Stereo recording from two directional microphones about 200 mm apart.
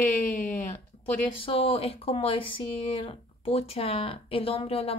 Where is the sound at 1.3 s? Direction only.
30° left (ahead or behind).